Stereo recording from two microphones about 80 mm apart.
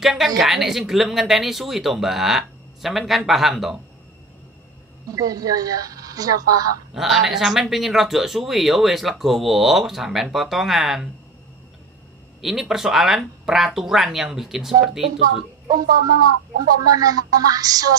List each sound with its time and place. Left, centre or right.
0.0 s speech: centre
5.1 s speech: right
6.9 s speech: centre
12.4 s speech: centre
15.7 s speech: right